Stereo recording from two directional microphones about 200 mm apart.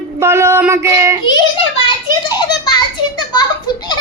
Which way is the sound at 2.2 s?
20° left (ahead or behind).